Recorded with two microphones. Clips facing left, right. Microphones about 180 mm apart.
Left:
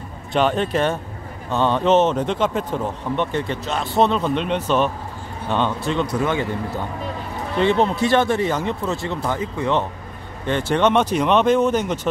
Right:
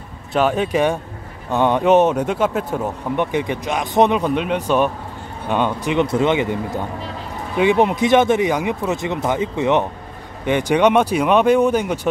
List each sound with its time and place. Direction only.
0.3 s speech: 5° right (ahead or behind)